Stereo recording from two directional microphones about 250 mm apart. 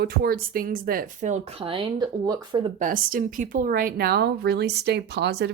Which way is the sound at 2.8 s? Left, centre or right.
Right.